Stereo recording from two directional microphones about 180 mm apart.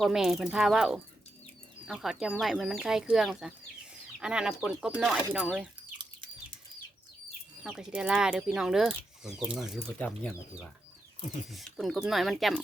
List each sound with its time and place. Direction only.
0.0 s speech: centre (ahead or behind)
7.6 s speech: 5° right (ahead or behind)